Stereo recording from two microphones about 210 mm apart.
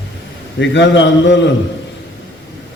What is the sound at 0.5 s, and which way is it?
Speech, 60° left (ahead or behind).